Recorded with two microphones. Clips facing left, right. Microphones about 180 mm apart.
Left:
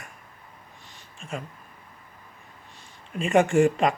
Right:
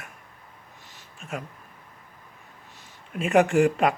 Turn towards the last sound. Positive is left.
turn(degrees=0)  # may be behind; listen again after turning